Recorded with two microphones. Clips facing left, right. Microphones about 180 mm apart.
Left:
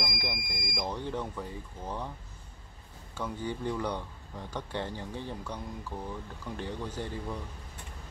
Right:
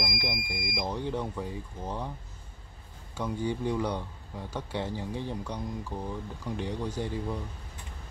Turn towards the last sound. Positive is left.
turn(degrees=-10)  # may be behind; listen again after turning